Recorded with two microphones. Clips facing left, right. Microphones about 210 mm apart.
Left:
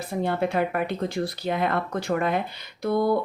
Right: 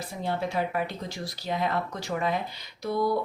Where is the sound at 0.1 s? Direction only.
60° left (ahead or behind).